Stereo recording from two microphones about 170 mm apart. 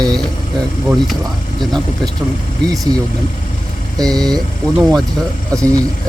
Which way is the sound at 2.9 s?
35° left (ahead or behind).